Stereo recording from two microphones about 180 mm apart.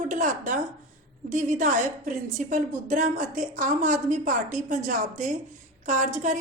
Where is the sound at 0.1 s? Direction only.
45° right (ahead or behind).